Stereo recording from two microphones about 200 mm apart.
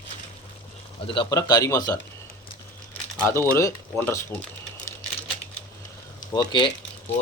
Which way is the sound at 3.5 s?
15° left (ahead or behind).